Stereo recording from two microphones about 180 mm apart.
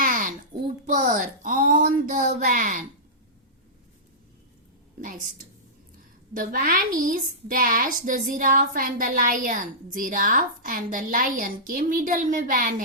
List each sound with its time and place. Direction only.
0.0 s a sound: 50° right (ahead or behind)
1.1 s speech: 45° right (ahead or behind)
6.3 s a woman's voice: 50° right (ahead or behind)